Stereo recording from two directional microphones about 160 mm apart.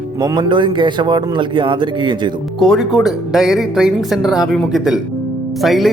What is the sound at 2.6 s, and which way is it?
Speech, centre (ahead or behind).